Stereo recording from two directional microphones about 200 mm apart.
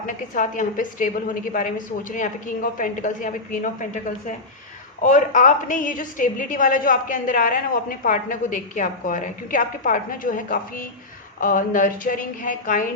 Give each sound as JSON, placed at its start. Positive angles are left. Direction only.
{"t": 0.0, "sound": "a woman's voice", "side_deg": 40}